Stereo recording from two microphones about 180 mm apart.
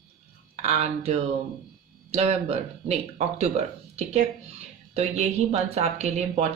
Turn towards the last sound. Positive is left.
turn(degrees=-35)  # may be behind; listen again after turning